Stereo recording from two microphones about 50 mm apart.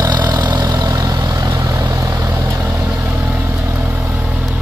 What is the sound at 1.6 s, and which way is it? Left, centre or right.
Vehicle, right.